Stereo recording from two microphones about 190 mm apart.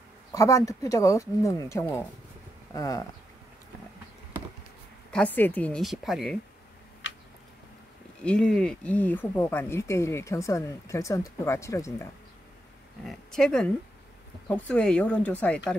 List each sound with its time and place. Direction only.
0.3 s speech: 15° left (ahead or behind)
5.1 s a woman's voice: 10° left (ahead or behind)
8.2 s speech: 5° left (ahead or behind)
13.0 s a woman's voice: centre (ahead or behind)